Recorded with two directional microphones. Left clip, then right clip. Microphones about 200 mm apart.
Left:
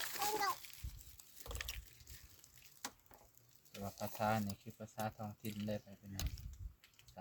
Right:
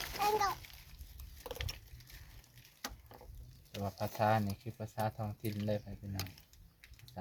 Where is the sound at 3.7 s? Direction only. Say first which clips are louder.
Right 6 dB; 40° right (ahead or behind).